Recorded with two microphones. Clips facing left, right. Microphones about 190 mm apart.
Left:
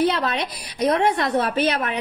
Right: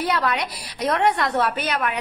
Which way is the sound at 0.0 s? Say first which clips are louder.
Left 2 dB; 25° left (ahead or behind).